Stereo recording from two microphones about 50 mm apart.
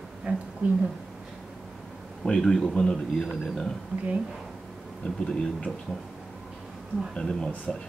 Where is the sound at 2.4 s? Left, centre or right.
Centre.